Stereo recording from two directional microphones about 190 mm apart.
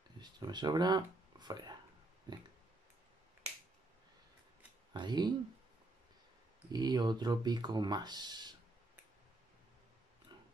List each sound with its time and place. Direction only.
0.2 s speech: 20° right (ahead or behind)
4.9 s speech: 20° right (ahead or behind)
6.7 s speech: 20° right (ahead or behind)